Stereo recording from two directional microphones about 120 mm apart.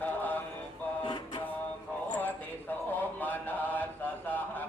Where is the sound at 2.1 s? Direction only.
15° left (ahead or behind).